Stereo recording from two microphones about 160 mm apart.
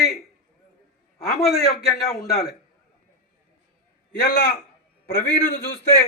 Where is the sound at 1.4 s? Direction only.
Centre (ahead or behind).